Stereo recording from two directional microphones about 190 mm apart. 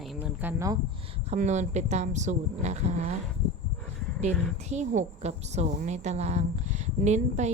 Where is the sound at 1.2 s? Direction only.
40° right (ahead or behind).